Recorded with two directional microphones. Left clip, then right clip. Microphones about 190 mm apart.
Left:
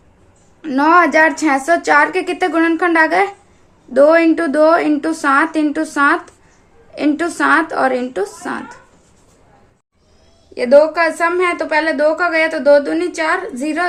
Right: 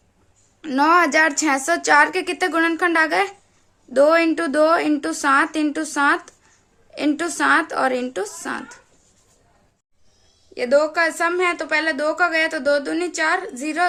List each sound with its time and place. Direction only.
0.6 s a woman's voice: 30° right (ahead or behind)
10.5 s a woman's voice: 25° right (ahead or behind)